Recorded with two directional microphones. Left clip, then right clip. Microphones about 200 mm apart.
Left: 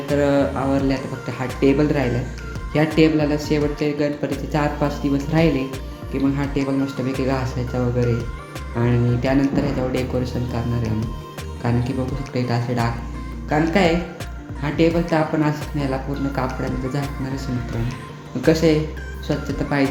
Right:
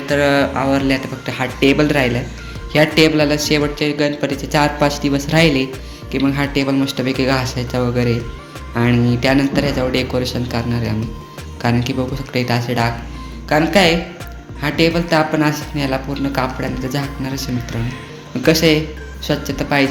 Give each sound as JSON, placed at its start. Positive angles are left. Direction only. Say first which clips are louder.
{"t": 0.1, "sound": "speech", "louder": "right 4 dB", "side_deg": 0}
{"t": 18.4, "sound": "speech", "louder": "right 3 dB", "side_deg": -15}